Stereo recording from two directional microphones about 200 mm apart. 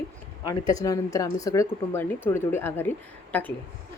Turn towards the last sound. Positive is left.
turn(degrees=10)  # may be behind; listen again after turning